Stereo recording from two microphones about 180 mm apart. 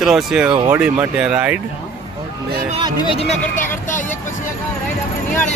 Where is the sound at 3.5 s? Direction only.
45° left (ahead or behind).